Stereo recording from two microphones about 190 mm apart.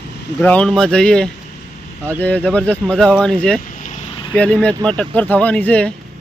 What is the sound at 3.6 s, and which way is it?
Vehicle, 45° left (ahead or behind).